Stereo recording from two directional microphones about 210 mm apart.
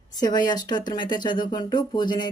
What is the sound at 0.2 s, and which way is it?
Speech, 20° left (ahead or behind).